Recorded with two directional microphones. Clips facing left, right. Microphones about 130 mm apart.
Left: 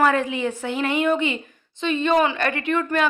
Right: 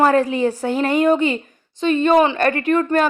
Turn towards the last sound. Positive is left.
turn(degrees=-40)  # may be behind; listen again after turning